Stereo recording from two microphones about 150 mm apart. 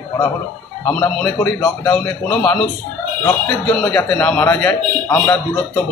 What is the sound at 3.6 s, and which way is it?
Speech, 5° left (ahead or behind).